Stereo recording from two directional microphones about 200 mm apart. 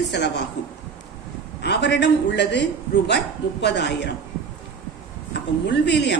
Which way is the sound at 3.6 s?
60° left (ahead or behind).